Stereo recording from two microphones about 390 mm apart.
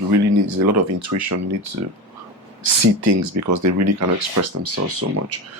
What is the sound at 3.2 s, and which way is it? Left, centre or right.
Speech, right.